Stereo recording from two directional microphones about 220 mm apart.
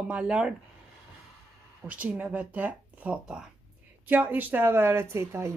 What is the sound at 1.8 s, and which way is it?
Speech, 5° right (ahead or behind).